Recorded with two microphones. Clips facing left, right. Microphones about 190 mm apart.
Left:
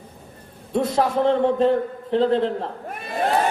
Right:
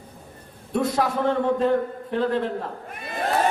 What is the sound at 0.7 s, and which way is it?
A man's voice, 25° left (ahead or behind).